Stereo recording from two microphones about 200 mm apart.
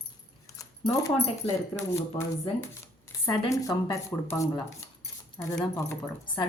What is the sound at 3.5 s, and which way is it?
Speech, 15° left (ahead or behind).